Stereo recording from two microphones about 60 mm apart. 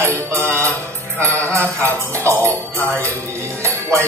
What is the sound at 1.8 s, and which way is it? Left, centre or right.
Music, right.